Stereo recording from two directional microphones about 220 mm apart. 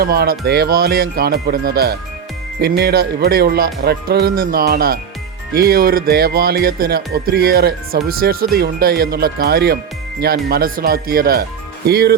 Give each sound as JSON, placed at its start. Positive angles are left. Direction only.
{"t": 0.0, "sound": "speech", "side_deg": -45}